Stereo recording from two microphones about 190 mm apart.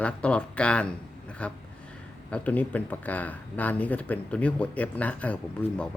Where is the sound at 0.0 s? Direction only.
5° left (ahead or behind).